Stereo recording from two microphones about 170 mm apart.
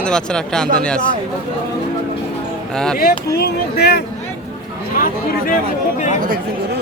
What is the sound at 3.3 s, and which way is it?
Speech, 65° left (ahead or behind).